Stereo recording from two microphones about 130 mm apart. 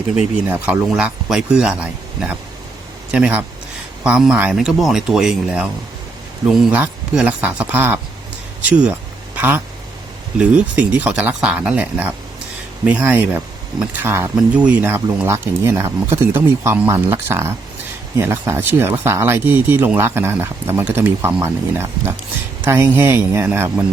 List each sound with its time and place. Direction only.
0.2 s speech: 10° right (ahead or behind)
9.3 s a sound: 15° right (ahead or behind)
10.3 s speech: 10° right (ahead or behind)